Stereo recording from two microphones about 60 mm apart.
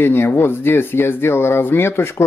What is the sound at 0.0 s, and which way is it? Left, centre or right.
Speech, left.